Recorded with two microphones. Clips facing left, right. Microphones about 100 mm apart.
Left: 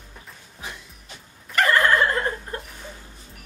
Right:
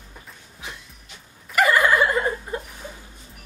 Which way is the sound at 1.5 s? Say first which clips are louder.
Right 1 dB; 10° right (ahead or behind).